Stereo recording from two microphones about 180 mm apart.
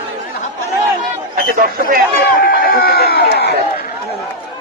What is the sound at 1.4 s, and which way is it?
Speech, 55° right (ahead or behind).